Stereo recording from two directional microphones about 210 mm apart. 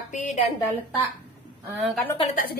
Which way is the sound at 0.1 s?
35° left (ahead or behind).